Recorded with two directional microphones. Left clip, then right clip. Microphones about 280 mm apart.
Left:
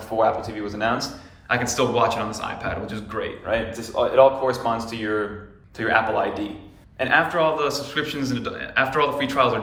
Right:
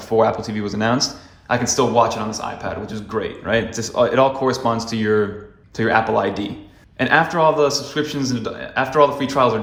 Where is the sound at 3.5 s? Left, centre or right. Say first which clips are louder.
Right 5 dB; right.